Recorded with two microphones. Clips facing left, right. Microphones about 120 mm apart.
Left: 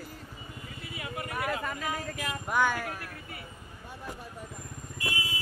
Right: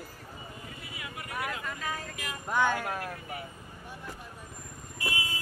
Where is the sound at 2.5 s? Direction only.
10° left (ahead or behind).